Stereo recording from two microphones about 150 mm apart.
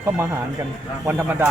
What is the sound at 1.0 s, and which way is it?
Speech, 15° right (ahead or behind).